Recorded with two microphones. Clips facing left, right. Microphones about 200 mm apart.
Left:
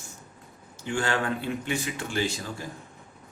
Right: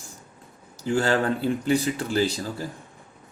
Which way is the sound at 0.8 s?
35° right (ahead or behind).